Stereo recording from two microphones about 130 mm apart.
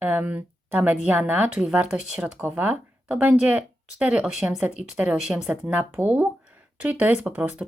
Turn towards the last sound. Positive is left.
turn(degrees=-10)  # may be behind; listen again after turning